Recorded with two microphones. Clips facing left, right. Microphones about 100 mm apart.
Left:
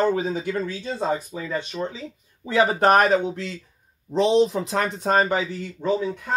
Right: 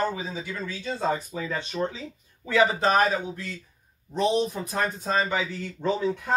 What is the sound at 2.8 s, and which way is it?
Speech, 65° left (ahead or behind).